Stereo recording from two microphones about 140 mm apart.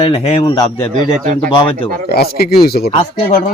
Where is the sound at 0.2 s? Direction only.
45° left (ahead or behind).